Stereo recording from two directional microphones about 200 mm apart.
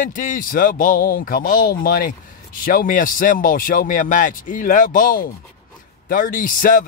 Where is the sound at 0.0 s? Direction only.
40° left (ahead or behind).